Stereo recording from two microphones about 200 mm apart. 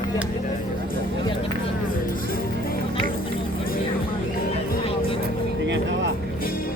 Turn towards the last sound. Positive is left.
turn(degrees=-65)  # may be behind; listen again after turning